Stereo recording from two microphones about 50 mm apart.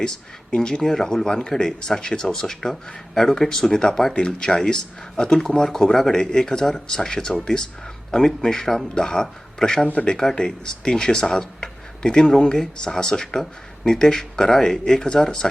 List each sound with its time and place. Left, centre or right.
0.0 s speech: centre
9.8 s speech: left
10.1 s speech: centre